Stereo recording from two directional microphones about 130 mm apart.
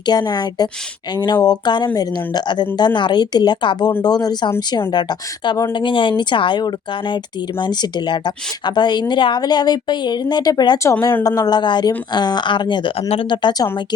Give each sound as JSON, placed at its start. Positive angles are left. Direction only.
{"t": 0.0, "sound": "a woman's voice", "side_deg": 30}